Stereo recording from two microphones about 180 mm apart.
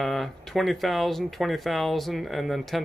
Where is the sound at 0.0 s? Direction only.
Centre (ahead or behind).